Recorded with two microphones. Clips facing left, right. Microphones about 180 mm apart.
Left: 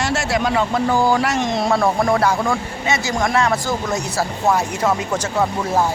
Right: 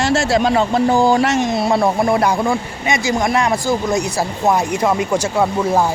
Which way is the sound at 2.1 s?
15° right (ahead or behind).